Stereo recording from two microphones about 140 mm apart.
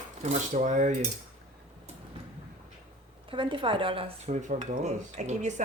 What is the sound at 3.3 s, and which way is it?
Speech, 35° right (ahead or behind).